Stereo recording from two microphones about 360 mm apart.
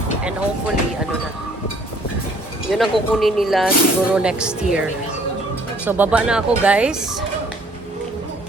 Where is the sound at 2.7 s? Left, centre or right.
Centre.